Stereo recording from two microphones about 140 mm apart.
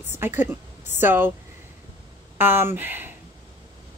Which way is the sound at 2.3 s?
15° right (ahead or behind).